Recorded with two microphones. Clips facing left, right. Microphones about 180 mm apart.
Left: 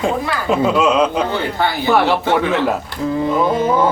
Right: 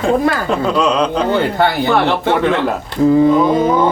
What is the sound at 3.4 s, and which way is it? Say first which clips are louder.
Speech: right 3 dB; 5° left (ahead or behind).